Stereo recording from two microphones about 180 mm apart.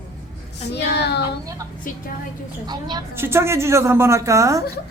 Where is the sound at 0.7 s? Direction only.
70° left (ahead or behind).